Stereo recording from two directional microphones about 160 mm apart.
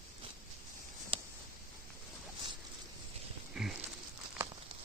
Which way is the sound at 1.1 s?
35° right (ahead or behind).